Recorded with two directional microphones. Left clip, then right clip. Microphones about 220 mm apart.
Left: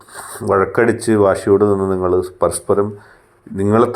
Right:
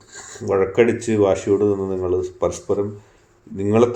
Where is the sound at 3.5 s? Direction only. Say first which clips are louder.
Left 5 dB; 25° left (ahead or behind).